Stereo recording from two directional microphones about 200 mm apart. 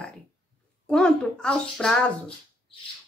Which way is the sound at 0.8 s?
5° left (ahead or behind).